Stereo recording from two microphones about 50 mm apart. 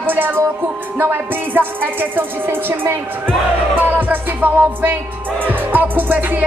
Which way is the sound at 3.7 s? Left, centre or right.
Right.